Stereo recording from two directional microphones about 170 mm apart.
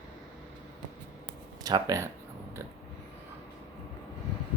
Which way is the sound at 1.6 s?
20° right (ahead or behind).